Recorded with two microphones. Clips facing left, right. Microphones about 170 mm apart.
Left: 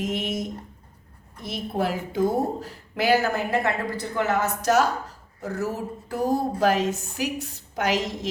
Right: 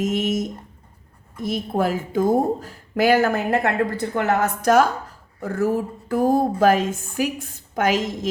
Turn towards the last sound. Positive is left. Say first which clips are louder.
# right 4 dB
turn(degrees=-50)  # may be behind; listen again after turning